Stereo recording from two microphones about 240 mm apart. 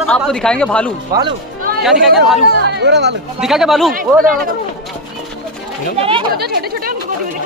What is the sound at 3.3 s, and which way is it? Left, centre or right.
Speech, centre.